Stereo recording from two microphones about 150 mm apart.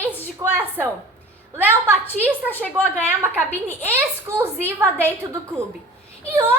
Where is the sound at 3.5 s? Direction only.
15° left (ahead or behind).